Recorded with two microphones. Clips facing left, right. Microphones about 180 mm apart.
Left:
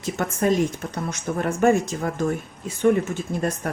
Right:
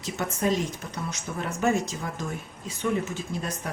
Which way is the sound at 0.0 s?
50° left (ahead or behind).